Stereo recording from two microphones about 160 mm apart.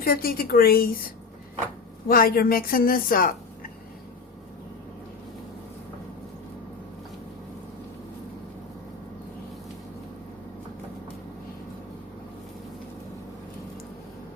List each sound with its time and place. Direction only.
0.0 s a woman's voice: 70° left (ahead or behind)